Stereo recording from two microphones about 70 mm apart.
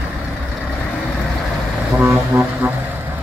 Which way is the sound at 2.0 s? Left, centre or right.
Right.